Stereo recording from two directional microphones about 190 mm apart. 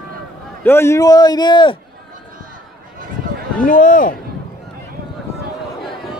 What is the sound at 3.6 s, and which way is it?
Speech, 45° left (ahead or behind).